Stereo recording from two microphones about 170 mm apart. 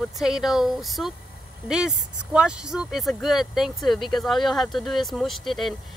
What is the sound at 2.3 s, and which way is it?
Speech, 5° right (ahead or behind).